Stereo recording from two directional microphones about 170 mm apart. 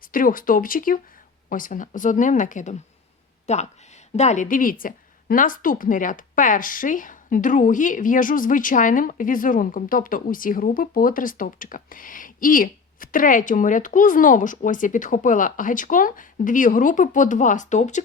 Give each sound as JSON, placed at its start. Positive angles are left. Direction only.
{"t": 0.0, "sound": "a woman's voice", "side_deg": 55}